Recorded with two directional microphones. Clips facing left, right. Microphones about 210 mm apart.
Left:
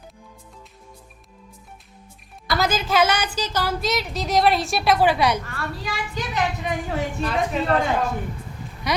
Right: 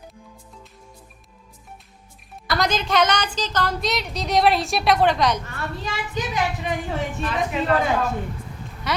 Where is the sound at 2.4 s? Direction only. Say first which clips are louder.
Even; 5° left (ahead or behind).